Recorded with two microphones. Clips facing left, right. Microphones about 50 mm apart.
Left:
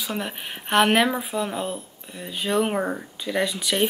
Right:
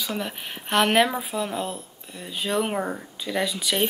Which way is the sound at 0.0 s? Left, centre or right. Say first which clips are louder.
Even; centre.